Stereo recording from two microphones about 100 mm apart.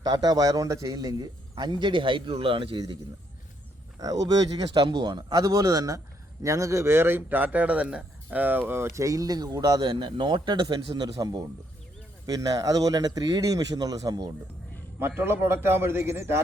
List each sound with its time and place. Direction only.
0.0 s a man's voice: 40° right (ahead or behind); by 2.8 s 60° right (ahead or behind)
3.9 s speech: 40° right (ahead or behind)
11.1 s speech: 40° right (ahead or behind)
14.9 s a man's voice: 25° right (ahead or behind)